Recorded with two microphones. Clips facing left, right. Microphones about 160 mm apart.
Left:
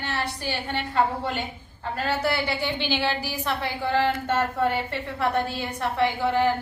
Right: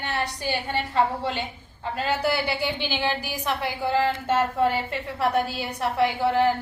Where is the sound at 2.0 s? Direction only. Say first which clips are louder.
Right 1 dB; centre (ahead or behind).